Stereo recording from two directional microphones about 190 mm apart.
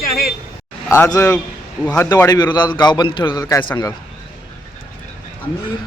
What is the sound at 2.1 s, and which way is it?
A man's voice, 20° left (ahead or behind).